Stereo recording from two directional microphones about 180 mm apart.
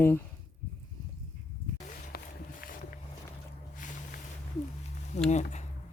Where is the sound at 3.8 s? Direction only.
45° left (ahead or behind).